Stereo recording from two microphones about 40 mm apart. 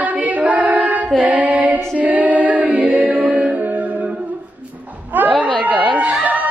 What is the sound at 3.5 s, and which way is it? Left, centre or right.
Music, right.